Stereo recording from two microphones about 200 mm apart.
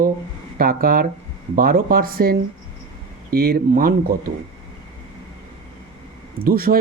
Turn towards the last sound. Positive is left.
turn(degrees=-45)  # may be behind; listen again after turning